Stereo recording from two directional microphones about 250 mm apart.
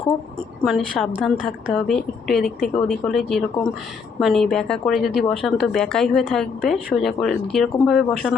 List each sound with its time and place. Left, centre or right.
0.6 s speech: centre